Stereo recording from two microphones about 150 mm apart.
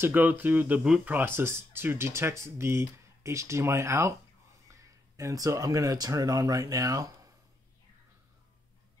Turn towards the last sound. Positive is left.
turn(degrees=-20)  # may be behind; listen again after turning